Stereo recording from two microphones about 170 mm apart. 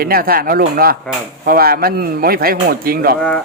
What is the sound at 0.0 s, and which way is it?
Speech, 60° right (ahead or behind).